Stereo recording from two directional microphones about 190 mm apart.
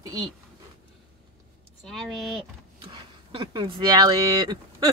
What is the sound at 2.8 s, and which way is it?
Speech, 25° right (ahead or behind).